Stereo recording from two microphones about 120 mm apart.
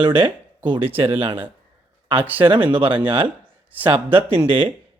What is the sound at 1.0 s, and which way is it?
Speech, 50° right (ahead or behind).